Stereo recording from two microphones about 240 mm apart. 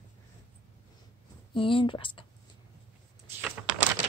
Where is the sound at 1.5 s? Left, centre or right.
Left.